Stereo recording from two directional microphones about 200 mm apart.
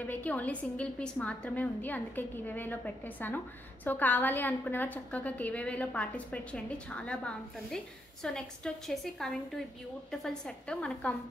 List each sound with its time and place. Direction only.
0.0 s a woman's voice: 10° left (ahead or behind)